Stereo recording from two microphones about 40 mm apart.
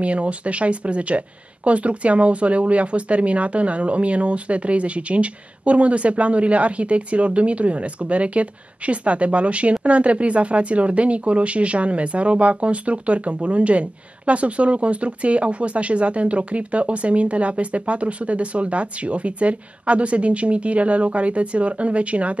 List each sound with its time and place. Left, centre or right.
0.0 s speech: right